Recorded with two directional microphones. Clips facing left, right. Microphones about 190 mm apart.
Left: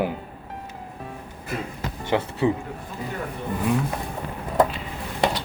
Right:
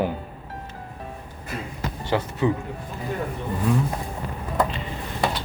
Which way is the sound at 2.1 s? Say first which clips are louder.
Left 1 dB; 25° left (ahead or behind).